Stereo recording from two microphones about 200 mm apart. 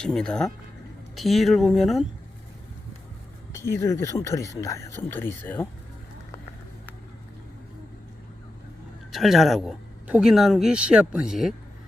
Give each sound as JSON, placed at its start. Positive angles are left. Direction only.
{"t": 0.0, "sound": "speech", "side_deg": 5}
{"t": 3.5, "sound": "speech", "side_deg": 15}
{"t": 9.1, "sound": "speech", "side_deg": 0}